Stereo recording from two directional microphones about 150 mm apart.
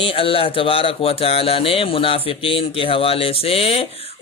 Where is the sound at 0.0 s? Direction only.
35° left (ahead or behind).